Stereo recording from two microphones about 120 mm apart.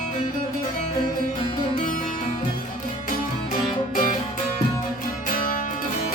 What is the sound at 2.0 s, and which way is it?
Music, 90° left.